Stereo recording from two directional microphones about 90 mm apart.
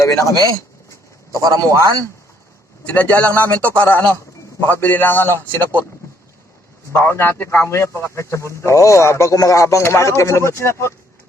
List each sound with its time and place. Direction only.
0.0 s a man's voice: 40° left (ahead or behind)
0.4 s a sound: 40° left (ahead or behind)
1.3 s a man's voice: 35° right (ahead or behind)
2.8 s a man's voice: 20° left (ahead or behind)
6.9 s a man's voice: 25° left (ahead or behind)